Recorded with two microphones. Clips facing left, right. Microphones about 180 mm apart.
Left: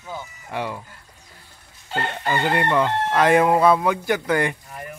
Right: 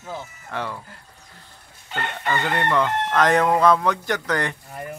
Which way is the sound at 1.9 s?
30° left (ahead or behind).